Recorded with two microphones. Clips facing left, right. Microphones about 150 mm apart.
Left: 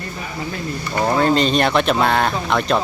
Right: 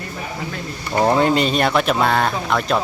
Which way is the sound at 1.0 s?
15° right (ahead or behind).